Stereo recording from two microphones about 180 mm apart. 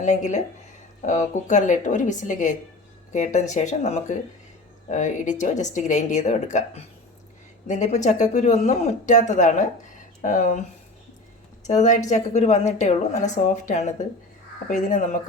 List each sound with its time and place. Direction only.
0.0 s a woman's voice: 40° left (ahead or behind)
11.6 s a woman's voice: 40° left (ahead or behind)